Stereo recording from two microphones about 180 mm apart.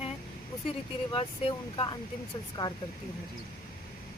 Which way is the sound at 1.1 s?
30° left (ahead or behind).